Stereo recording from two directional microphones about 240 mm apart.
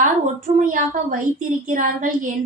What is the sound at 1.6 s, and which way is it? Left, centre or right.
Speech, right.